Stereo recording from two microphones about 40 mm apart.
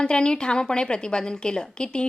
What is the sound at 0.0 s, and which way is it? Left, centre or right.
A woman's voice, left.